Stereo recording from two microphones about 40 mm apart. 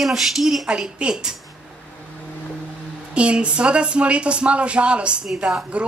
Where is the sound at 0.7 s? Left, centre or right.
Right.